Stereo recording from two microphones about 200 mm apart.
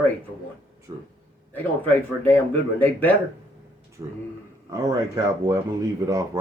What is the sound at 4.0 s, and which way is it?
Speech, 25° right (ahead or behind).